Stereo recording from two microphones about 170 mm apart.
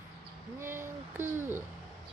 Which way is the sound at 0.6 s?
15° right (ahead or behind).